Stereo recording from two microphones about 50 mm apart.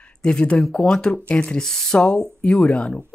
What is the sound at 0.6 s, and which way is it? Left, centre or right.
Speech, centre.